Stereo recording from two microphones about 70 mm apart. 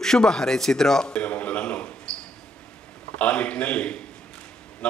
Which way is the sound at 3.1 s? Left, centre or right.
Left.